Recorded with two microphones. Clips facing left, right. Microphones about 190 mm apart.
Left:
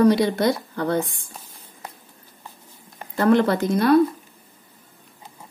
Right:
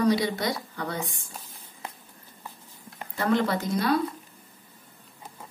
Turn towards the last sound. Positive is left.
turn(degrees=55)  # may be behind; listen again after turning